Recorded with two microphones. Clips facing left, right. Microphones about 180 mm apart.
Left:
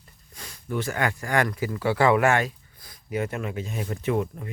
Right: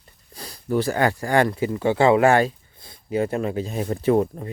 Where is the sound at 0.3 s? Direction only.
35° right (ahead or behind).